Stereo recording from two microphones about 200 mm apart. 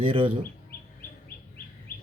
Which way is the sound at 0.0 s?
25° right (ahead or behind).